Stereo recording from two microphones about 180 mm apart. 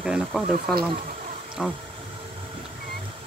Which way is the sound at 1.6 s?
5° right (ahead or behind).